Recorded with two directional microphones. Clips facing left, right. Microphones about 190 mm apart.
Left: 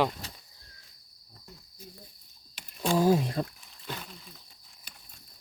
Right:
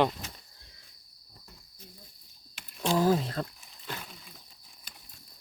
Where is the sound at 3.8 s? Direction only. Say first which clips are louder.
Left 1 dB; centre (ahead or behind).